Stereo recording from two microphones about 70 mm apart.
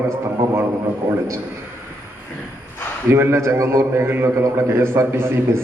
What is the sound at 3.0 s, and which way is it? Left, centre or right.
A man's voice, right.